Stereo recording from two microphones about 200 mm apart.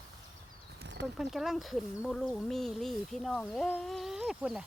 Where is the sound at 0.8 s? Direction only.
60° right (ahead or behind).